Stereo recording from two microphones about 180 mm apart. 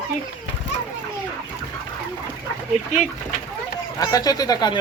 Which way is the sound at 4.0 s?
20° left (ahead or behind).